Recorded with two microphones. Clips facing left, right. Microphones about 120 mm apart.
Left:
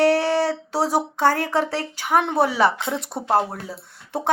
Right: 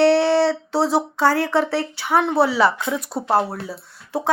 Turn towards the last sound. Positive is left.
turn(degrees=55)  # may be behind; listen again after turning